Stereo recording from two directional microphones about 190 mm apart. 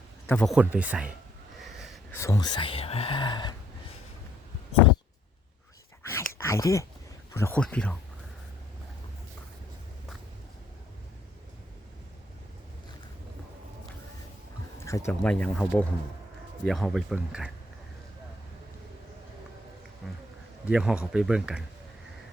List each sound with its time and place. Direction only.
0.3 s speech: 5° left (ahead or behind)
0.5 s speech: 5° right (ahead or behind)
2.1 s speech: 15° left (ahead or behind)
6.0 s a sound: 15° left (ahead or behind)
7.3 s speech: 10° left (ahead or behind)
14.8 s speech: 15° left (ahead or behind); by 17.5 s centre (ahead or behind)
20.7 s speech: 5° right (ahead or behind)